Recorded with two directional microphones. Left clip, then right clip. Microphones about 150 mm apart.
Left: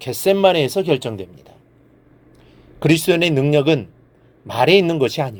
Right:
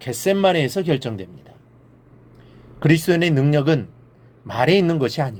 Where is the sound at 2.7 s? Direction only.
45° left (ahead or behind).